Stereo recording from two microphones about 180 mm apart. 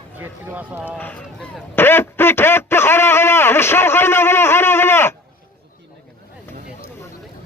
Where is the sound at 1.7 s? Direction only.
10° left (ahead or behind).